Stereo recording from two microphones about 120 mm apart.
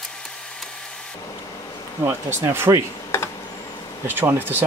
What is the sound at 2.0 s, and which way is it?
Speech, 20° right (ahead or behind).